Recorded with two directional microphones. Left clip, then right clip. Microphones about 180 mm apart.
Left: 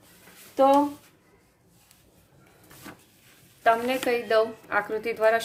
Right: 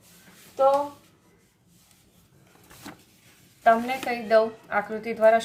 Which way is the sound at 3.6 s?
20° left (ahead or behind).